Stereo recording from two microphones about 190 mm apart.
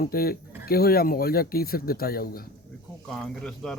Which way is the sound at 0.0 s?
50° left (ahead or behind).